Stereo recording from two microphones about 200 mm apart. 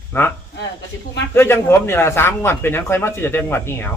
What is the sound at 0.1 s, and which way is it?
A man's voice, 10° left (ahead or behind).